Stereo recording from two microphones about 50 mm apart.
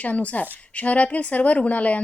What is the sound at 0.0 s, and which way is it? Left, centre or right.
A woman's voice, left.